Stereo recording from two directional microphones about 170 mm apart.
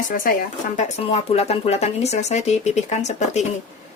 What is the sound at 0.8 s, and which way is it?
Speech, 40° left (ahead or behind).